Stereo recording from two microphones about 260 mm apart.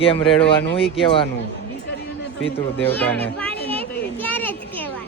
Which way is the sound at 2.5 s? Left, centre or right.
Centre.